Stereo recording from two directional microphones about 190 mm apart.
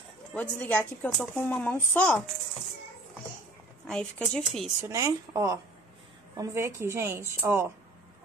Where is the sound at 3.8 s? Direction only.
5° left (ahead or behind).